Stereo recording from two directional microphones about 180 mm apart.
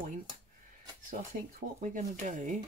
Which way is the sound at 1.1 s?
50° right (ahead or behind).